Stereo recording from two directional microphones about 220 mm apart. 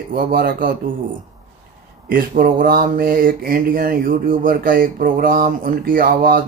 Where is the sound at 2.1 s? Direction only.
40° right (ahead or behind).